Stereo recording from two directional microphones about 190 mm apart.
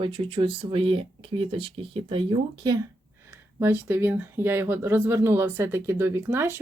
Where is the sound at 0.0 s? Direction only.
25° right (ahead or behind).